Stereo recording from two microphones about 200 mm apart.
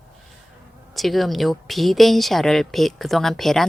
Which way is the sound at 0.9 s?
Centre (ahead or behind).